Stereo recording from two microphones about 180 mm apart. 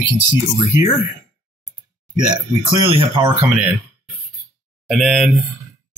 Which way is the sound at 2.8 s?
25° right (ahead or behind).